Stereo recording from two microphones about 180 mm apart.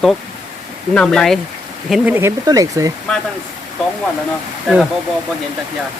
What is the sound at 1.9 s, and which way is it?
Speech, 10° right (ahead or behind).